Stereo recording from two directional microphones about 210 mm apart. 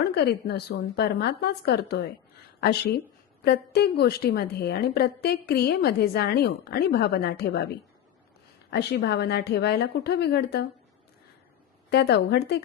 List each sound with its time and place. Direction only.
0.1 s a woman's voice: 50° left (ahead or behind)
8.7 s a woman's voice: 50° left (ahead or behind)
11.9 s a woman's voice: 50° left (ahead or behind)